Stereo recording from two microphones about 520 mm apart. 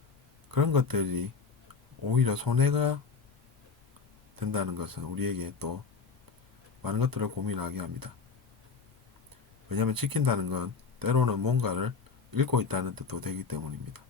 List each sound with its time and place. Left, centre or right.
0.5 s speech: right
4.4 s speech: right
6.8 s speech: right
9.6 s speech: right